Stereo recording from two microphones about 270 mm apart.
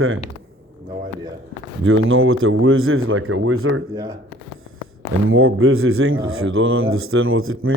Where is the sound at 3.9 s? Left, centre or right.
Centre.